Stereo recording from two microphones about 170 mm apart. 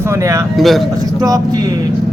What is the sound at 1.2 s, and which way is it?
Speech, 20° right (ahead or behind).